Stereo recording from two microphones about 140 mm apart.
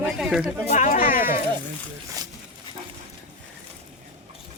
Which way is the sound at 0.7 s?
60° left (ahead or behind).